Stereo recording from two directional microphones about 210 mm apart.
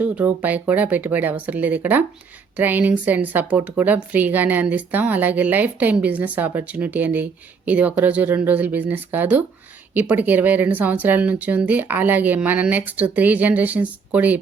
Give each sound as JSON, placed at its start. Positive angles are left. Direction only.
{"t": 0.0, "sound": "a woman's voice", "side_deg": -5}